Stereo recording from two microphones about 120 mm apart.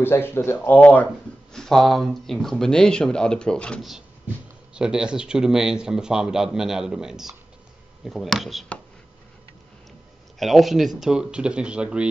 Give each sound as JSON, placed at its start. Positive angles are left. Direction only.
{"t": 0.0, "sound": "speech", "side_deg": 20}
{"t": 4.7, "sound": "speech", "side_deg": -5}
{"t": 10.4, "sound": "speech", "side_deg": 0}